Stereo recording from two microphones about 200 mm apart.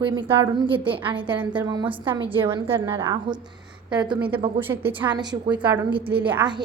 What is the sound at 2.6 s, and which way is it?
Speech, 15° right (ahead or behind).